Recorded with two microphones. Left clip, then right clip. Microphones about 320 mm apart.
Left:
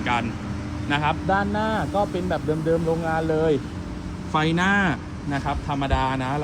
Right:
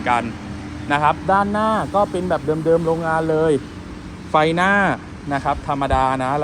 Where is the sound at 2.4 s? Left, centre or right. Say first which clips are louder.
Right 6 dB; right.